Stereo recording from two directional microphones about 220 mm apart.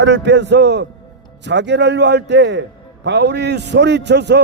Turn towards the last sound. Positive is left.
turn(degrees=-50)  # may be behind; listen again after turning